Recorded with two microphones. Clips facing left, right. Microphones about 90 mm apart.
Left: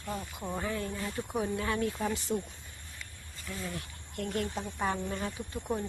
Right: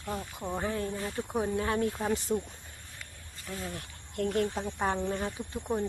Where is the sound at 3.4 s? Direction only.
40° right (ahead or behind).